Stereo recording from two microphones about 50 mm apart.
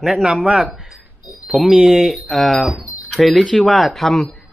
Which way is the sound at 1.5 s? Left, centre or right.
Centre.